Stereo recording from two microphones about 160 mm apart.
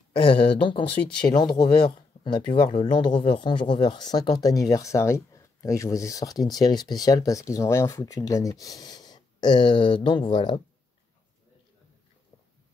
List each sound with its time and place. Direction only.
0.2 s speech: 30° left (ahead or behind)